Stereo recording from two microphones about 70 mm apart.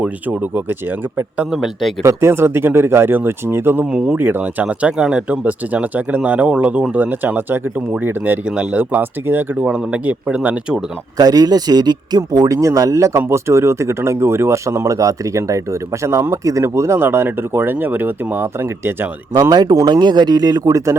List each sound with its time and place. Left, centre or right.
0.0 s speech: right
1.5 s speech: centre
2.0 s speech: right
3.9 s speech: centre
4.2 s speech: right
4.6 s speech: centre; by 8.4 s right
8.4 s speech: centre
8.8 s speech: right
9.6 s speech: centre
11.2 s speech: right
12.5 s speech: right
19.4 s speech: right
19.8 s speech: right